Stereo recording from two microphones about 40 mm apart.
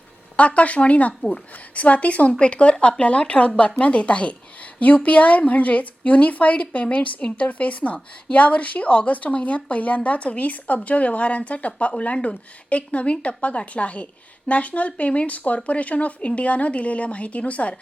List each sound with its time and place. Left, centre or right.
0.3 s a woman's voice: left